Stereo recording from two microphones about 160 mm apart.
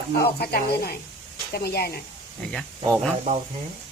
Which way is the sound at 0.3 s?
80° left.